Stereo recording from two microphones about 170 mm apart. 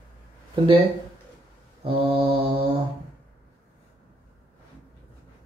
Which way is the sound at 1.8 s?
35° right (ahead or behind).